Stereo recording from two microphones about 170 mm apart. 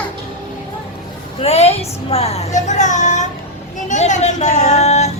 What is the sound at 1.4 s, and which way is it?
Speech, 40° left (ahead or behind).